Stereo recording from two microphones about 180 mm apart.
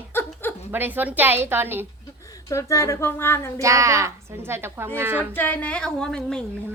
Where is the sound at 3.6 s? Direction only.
15° right (ahead or behind).